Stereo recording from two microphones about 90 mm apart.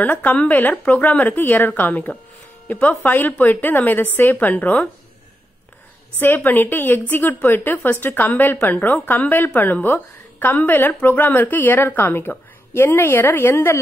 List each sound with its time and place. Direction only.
0.0 s a woman's voice: 15° left (ahead or behind)
6.1 s a woman's voice: 25° left (ahead or behind)